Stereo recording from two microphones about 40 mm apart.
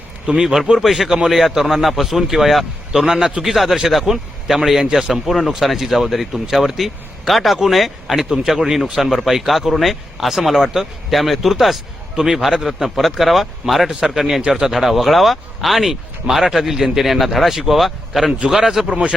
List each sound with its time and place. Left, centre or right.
0.3 s a man's voice: centre
3.1 s a man's voice: centre
3.4 s a man's voice: centre
12.1 s a man's voice: centre